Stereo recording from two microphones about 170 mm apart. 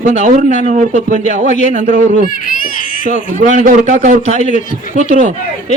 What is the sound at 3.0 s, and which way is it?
A man's voice, 45° right (ahead or behind).